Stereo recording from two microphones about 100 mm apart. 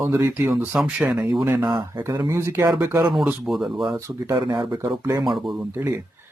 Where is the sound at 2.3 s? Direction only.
25° right (ahead or behind).